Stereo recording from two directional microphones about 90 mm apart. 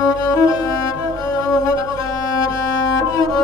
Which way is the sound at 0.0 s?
45° left (ahead or behind).